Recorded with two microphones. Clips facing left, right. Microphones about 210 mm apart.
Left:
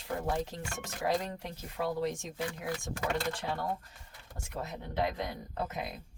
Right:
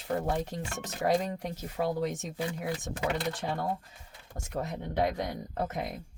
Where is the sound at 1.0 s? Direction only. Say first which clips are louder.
Right 4 dB; 45° right (ahead or behind).